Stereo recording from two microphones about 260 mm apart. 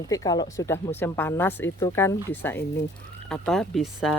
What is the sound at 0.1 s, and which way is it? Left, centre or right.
Speech, centre.